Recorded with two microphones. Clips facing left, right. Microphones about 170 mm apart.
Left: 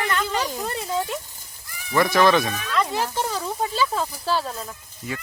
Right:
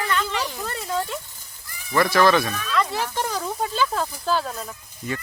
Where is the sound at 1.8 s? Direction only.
15° left (ahead or behind).